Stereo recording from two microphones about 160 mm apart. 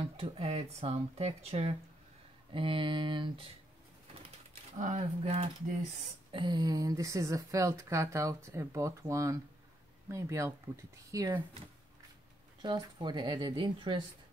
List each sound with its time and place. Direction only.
0.2 s speech: 35° right (ahead or behind)
4.7 s speech: 50° right (ahead or behind)
6.3 s speech: 30° right (ahead or behind)
12.6 s speech: 30° right (ahead or behind)